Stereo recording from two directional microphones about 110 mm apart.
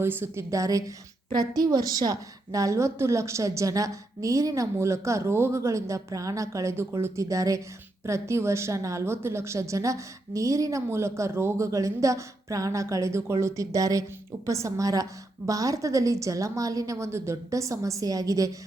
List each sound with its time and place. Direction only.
0.0 s a woman's voice: 20° right (ahead or behind)